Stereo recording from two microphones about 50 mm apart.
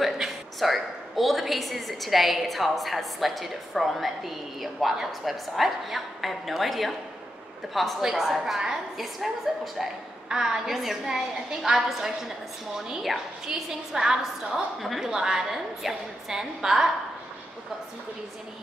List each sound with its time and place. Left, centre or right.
0.0 s a woman's voice: centre
8.0 s a woman's voice: centre